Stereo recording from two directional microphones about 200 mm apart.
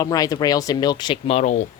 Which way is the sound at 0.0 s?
20° left (ahead or behind).